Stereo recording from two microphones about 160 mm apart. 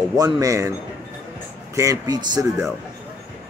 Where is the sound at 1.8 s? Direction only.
20° right (ahead or behind).